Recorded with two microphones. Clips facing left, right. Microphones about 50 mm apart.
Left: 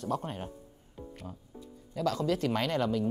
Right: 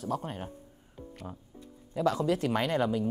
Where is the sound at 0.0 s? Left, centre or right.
Centre.